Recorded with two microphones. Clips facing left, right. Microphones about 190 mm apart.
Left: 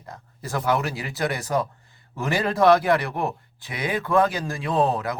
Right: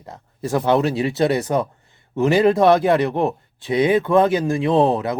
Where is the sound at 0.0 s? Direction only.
25° right (ahead or behind).